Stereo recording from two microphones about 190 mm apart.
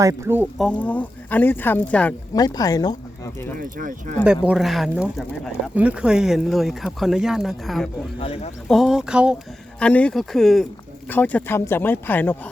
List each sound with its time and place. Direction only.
0.0 s speech: 15° right (ahead or behind)
0.6 s speech: 5° left (ahead or behind)
2.3 s speech: 20° left (ahead or behind)
3.6 s speech: 45° right (ahead or behind)
4.3 s speech: 5° right (ahead or behind)
8.2 s speech: 30° left (ahead or behind)
8.6 s speech: centre (ahead or behind)
9.8 s speech: 5° left (ahead or behind)